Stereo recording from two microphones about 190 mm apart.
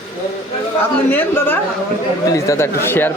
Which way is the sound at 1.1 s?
10° left (ahead or behind).